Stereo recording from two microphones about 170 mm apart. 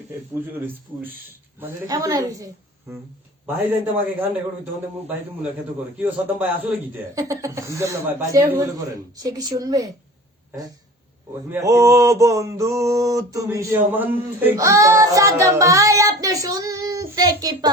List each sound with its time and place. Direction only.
1.5 s a woman's voice: 15° right (ahead or behind)
3.4 s mantra: 10° right (ahead or behind)
8.5 s a woman's voice: 20° right (ahead or behind)
11.5 s mantra: 15° right (ahead or behind)
14.5 s child singing: 20° right (ahead or behind)